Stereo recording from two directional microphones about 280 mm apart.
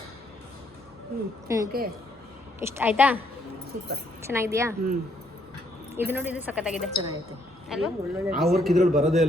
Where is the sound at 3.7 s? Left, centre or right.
Right.